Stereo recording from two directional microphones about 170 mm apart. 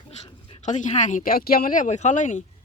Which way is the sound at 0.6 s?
45° left (ahead or behind).